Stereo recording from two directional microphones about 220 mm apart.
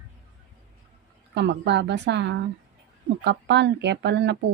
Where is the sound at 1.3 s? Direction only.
50° right (ahead or behind).